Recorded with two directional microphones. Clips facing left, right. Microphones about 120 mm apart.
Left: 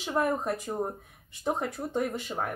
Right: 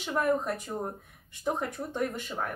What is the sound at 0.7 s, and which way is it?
Speech, 15° left (ahead or behind).